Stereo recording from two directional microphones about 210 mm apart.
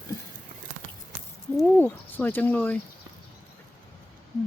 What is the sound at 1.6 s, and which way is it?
Speech, 10° left (ahead or behind).